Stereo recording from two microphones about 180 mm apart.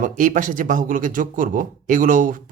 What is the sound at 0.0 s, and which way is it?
Speech, 45° right (ahead or behind).